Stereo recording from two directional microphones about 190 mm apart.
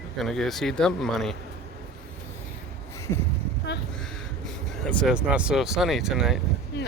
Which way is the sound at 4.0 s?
Centre (ahead or behind).